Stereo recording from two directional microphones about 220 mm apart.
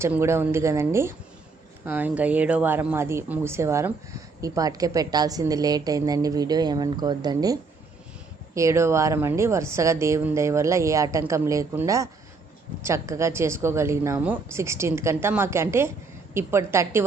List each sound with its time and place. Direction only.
0.0 s a woman's voice: 10° right (ahead or behind)